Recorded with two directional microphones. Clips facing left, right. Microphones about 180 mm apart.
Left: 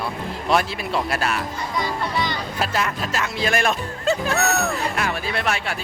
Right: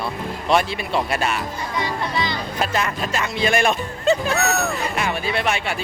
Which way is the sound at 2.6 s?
Centre (ahead or behind).